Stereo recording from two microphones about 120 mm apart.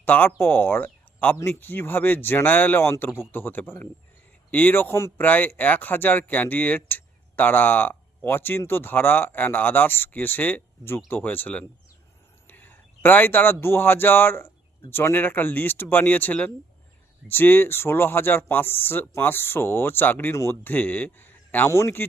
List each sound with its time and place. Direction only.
0.0 s a man's voice: 15° left (ahead or behind)